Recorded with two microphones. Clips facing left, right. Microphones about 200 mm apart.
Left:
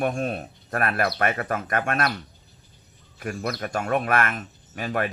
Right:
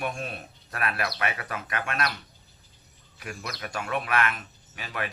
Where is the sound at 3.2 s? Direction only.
45° left (ahead or behind).